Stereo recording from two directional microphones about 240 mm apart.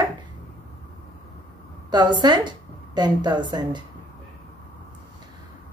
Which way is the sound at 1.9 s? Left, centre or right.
Centre.